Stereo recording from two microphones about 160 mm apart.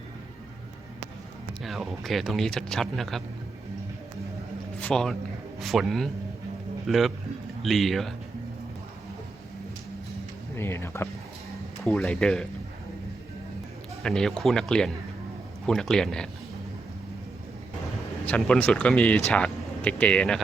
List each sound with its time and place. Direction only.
1.6 s speech: centre (ahead or behind)
4.8 s speech: 5° left (ahead or behind)
10.5 s speech: 15° left (ahead or behind)
11.8 s speech: 5° left (ahead or behind)
14.0 s speech: 5° left (ahead or behind)
18.3 s speech: 5° left (ahead or behind)